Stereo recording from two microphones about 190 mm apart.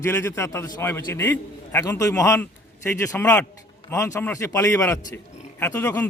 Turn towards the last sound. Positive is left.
turn(degrees=15)  # may be behind; listen again after turning